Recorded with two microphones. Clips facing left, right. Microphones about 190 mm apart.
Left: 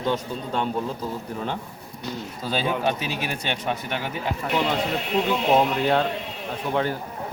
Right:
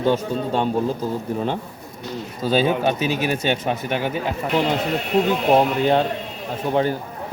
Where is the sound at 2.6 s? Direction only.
20° right (ahead or behind).